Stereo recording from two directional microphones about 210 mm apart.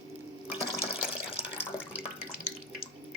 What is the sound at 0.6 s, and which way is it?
Water tap, 25° left (ahead or behind).